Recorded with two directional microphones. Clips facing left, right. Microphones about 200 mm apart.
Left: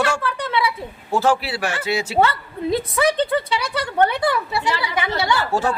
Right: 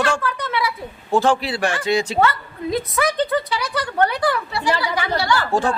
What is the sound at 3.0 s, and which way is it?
Speech, 30° left (ahead or behind).